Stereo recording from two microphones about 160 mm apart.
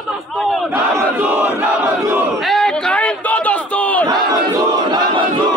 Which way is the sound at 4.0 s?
20° right (ahead or behind).